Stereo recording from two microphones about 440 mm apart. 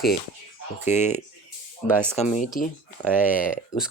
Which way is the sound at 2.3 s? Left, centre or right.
Centre.